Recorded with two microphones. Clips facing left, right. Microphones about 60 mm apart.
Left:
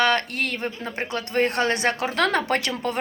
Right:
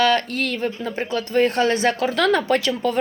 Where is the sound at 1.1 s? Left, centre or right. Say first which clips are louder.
Right 4 dB; left.